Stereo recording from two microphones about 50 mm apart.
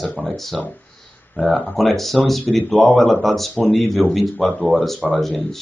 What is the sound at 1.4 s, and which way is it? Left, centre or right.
Speech, left.